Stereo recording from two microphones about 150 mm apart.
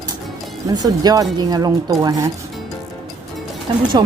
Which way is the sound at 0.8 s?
25° right (ahead or behind).